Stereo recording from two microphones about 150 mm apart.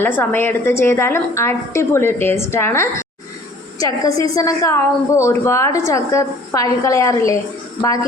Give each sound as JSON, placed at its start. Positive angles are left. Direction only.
{"t": 0.0, "sound": "a woman's voice", "side_deg": 15}